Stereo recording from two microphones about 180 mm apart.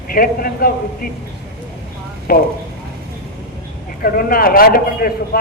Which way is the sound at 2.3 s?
55° left (ahead or behind).